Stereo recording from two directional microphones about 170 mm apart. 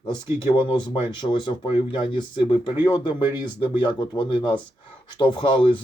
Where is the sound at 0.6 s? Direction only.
30° left (ahead or behind).